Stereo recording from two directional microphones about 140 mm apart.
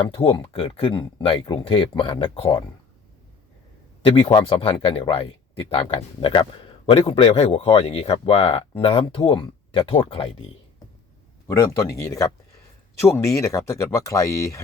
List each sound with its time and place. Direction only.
0.1 s speech: 40° left (ahead or behind)
4.0 s speech: 40° left (ahead or behind)
11.4 s speech: 25° left (ahead or behind)